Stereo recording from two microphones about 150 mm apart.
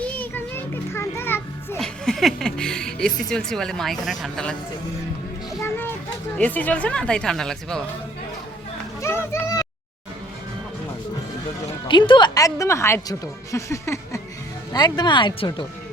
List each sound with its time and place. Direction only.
0.0 s children playing: 10° left (ahead or behind)
1.8 s speech: centre (ahead or behind)
5.6 s a sound: 15° left (ahead or behind)
6.3 s speech: 10° left (ahead or behind)
9.0 s a sound: 15° left (ahead or behind)
11.9 s a woman's voice: 30° left (ahead or behind)